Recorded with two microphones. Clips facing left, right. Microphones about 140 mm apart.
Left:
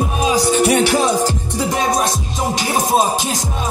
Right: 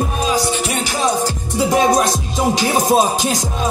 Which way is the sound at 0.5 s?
55° left (ahead or behind).